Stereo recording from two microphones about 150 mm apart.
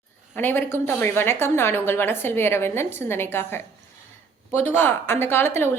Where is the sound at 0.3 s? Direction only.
15° left (ahead or behind).